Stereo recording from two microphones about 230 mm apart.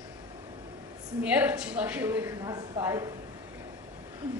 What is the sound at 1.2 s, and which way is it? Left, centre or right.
Speech, centre.